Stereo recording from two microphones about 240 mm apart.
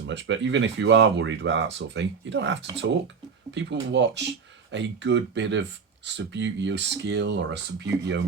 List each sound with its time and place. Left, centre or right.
0.0 s speech: right